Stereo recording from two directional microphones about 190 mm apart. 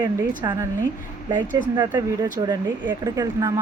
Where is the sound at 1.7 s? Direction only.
20° right (ahead or behind).